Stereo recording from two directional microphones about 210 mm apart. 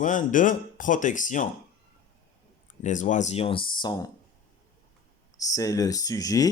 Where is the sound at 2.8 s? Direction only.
35° left (ahead or behind); by 4.0 s 20° left (ahead or behind).